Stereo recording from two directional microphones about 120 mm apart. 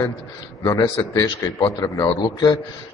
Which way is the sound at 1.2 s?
35° left (ahead or behind).